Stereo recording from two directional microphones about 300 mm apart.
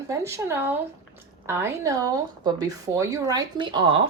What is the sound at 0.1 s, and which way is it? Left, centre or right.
Speech, centre.